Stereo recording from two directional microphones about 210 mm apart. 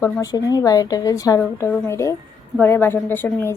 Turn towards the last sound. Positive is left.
turn(degrees=10)  # may be behind; listen again after turning